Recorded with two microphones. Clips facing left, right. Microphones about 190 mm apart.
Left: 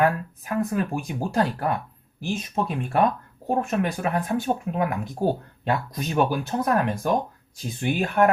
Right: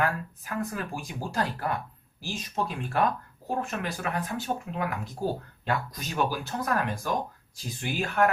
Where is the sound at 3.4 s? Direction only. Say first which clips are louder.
Left 7 dB; 60° left (ahead or behind).